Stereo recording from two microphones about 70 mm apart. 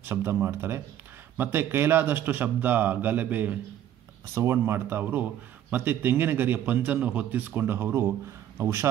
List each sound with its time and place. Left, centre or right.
0.0 s speech: right
4.4 s speech: right